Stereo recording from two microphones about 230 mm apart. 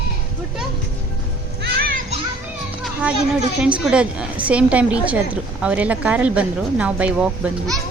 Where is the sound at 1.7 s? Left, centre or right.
Right.